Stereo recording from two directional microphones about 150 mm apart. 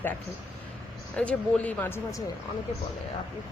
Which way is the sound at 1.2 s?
10° left (ahead or behind).